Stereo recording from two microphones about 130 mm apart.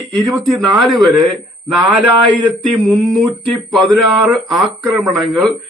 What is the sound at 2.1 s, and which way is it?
Speech, 35° right (ahead or behind).